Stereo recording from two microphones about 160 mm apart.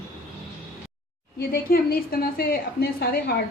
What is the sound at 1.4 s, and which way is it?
A woman's voice, 70° left (ahead or behind).